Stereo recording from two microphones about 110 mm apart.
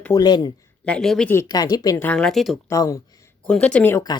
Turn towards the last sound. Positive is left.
turn(degrees=10)  # may be behind; listen again after turning